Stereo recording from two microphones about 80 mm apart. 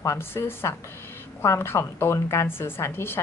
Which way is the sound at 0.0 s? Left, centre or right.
Left.